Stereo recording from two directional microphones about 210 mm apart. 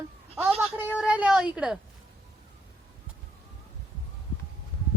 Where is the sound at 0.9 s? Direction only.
5° right (ahead or behind).